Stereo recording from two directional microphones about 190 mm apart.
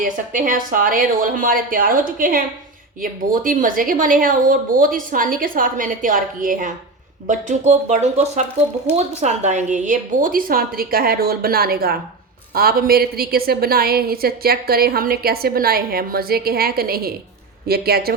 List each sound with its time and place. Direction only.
0.0 s a woman's voice: 45° right (ahead or behind)